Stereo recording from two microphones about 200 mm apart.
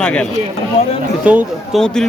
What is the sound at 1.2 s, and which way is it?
Speech, 5° right (ahead or behind).